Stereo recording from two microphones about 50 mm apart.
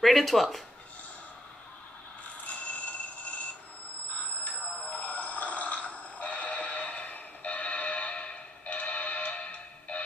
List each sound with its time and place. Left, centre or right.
0.0 s speech: centre
2.4 s music: left
4.5 s a sound: left